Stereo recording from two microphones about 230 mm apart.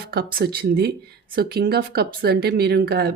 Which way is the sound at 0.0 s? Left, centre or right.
Right.